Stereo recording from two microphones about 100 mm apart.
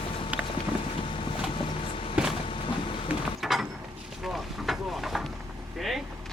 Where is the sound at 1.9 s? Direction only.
65° left (ahead or behind).